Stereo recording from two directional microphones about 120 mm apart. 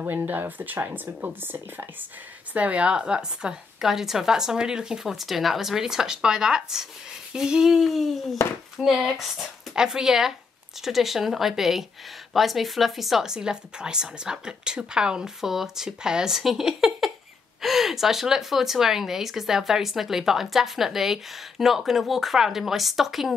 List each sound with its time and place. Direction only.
0.0 s speech: 15° right (ahead or behind)